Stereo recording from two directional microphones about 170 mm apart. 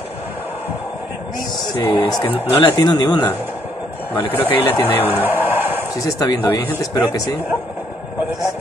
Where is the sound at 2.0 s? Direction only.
25° left (ahead or behind).